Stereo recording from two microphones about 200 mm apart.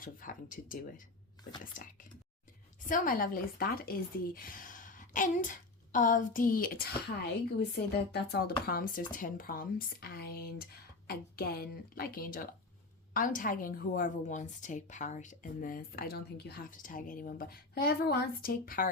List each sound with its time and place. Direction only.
0.0 s a woman's voice: 45° left (ahead or behind)
2.8 s a woman's voice: 40° left (ahead or behind)
8.1 s a woman's voice: 55° left (ahead or behind)